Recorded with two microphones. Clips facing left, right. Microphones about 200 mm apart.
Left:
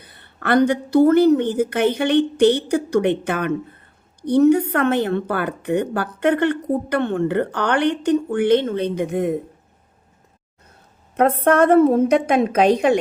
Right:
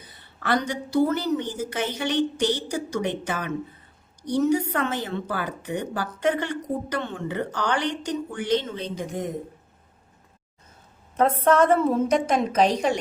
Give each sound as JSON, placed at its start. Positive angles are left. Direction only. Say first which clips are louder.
{"t": 0.0, "sound": "a woman's voice", "louder": "left 5 dB", "side_deg": 60}
{"t": 11.2, "sound": "a woman's voice", "louder": "left 4 dB", "side_deg": 60}